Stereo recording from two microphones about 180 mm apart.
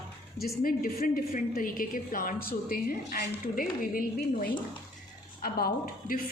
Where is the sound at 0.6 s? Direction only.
50° left (ahead or behind).